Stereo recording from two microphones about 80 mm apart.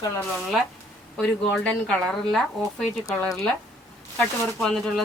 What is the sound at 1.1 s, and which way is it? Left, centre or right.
Speech, centre.